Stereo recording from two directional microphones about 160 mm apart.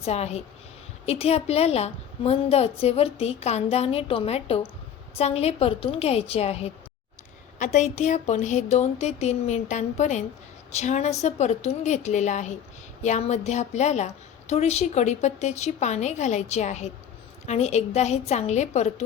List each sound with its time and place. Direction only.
0.0 s a woman's voice: 40° left (ahead or behind)